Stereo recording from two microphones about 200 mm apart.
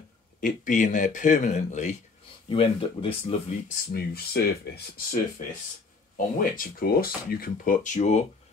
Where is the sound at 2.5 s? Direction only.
25° left (ahead or behind).